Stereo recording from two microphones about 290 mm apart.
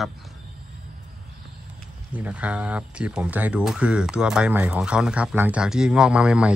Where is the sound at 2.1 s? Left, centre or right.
Centre.